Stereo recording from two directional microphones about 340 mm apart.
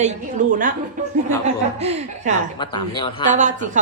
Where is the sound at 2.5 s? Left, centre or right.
Centre.